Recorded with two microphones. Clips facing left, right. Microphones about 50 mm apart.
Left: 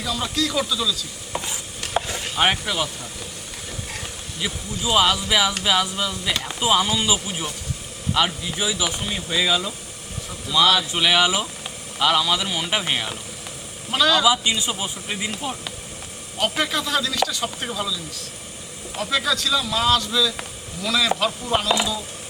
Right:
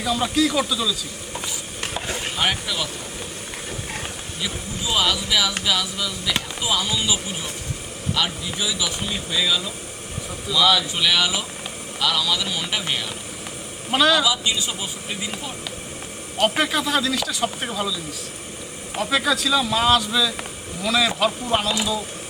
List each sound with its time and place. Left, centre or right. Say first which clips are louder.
0.0 s speech: right 4 dB; centre
2.0 s a sound: right 2 dB; right
2.4 s speech: left 4 dB; left
4.4 s speech: left 2 dB; centre
9.0 s speech: left 1 dB; centre
10.8 s speech: left 2 dB; centre
13.9 s a man's voice: right 1 dB; centre
14.3 s speech: left 3 dB; left
16.4 s speech: right 3 dB; centre